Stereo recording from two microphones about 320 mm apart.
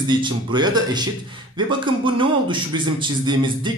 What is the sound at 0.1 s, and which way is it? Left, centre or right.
A man's voice, centre.